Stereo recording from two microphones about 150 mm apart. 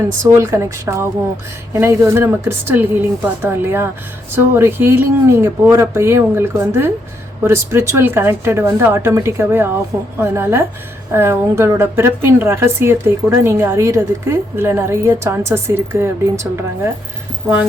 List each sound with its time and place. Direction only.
0.0 s a woman's voice: 20° right (ahead or behind)